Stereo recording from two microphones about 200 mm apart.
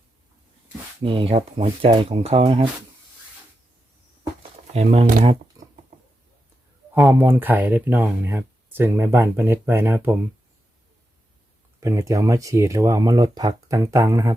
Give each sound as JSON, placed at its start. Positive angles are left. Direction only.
{"t": 1.0, "sound": "speech", "side_deg": -25}
{"t": 4.7, "sound": "speech", "side_deg": -30}
{"t": 6.9, "sound": "speech", "side_deg": -10}
{"t": 11.8, "sound": "speech", "side_deg": -15}